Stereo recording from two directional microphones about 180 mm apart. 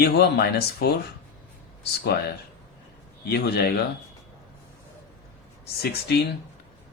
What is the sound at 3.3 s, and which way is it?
Speech, 65° left (ahead or behind).